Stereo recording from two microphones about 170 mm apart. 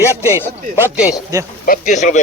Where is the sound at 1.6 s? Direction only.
50° left (ahead or behind).